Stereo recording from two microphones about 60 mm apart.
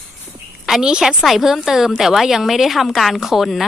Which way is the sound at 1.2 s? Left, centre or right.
Centre.